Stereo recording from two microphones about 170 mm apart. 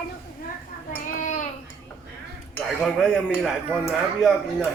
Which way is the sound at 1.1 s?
45° left (ahead or behind).